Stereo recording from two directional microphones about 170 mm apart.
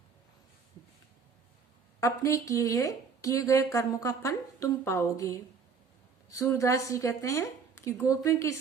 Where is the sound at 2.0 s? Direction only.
20° left (ahead or behind).